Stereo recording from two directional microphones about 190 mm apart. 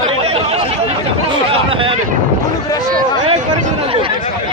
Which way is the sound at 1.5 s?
30° right (ahead or behind).